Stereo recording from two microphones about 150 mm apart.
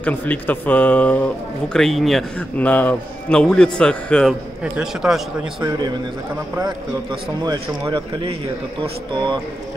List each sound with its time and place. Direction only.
0.0 s a man's voice: 10° left (ahead or behind)
5.6 s speech: 25° right (ahead or behind)